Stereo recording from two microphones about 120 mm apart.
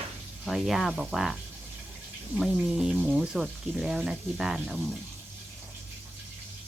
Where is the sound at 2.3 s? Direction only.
5° right (ahead or behind).